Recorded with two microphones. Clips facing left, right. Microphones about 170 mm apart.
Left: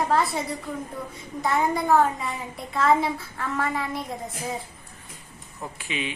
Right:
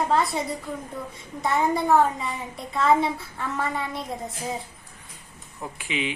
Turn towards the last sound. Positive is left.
turn(degrees=-15)  # may be behind; listen again after turning